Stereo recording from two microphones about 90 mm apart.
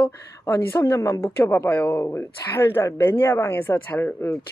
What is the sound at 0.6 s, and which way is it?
Speech, 30° left (ahead or behind).